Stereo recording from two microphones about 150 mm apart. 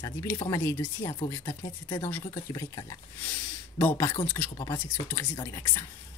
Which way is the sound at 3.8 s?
20° left (ahead or behind).